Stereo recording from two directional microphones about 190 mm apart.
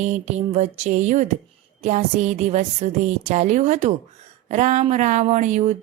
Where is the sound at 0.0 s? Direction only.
35° right (ahead or behind).